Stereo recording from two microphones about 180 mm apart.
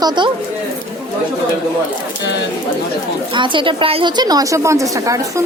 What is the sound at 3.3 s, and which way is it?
A woman's voice, 25° right (ahead or behind).